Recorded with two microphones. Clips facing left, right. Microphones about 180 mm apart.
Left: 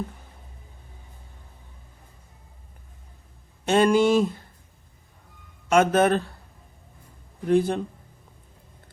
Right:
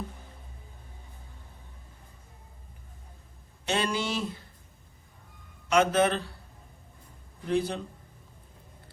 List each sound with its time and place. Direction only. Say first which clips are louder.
3.7 s speech: left 11 dB; 50° left (ahead or behind)
5.6 s speech: left 4 dB; 50° left (ahead or behind)
7.4 s speech: left 7 dB; 50° left (ahead or behind)